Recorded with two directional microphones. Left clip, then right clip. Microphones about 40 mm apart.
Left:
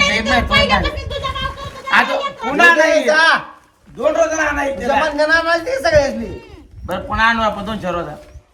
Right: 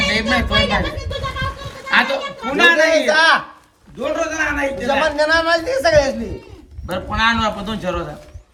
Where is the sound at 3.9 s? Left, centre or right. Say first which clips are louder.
Left 5 dB; left.